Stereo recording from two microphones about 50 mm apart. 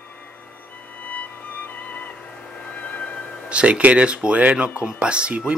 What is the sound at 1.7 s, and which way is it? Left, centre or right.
Music, left.